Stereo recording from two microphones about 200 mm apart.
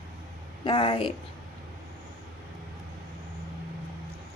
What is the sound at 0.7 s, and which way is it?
Speech, 25° left (ahead or behind).